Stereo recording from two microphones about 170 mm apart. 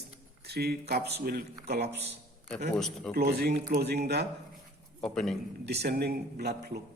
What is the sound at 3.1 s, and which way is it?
Speech, 70° right (ahead or behind).